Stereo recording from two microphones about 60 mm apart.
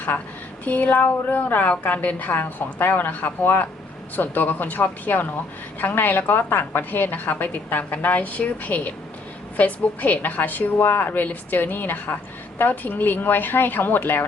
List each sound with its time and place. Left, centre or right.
0.6 s a woman's voice: left